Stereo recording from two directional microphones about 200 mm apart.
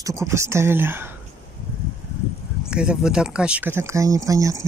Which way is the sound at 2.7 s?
5° right (ahead or behind).